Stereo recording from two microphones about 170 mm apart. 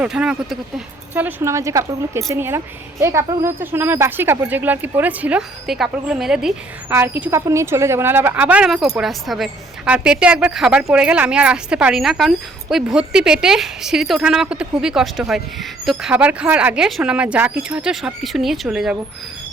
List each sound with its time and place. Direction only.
0.0 s a woman's voice: 5° right (ahead or behind)